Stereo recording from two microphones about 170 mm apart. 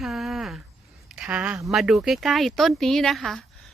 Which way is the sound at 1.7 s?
Centre (ahead or behind).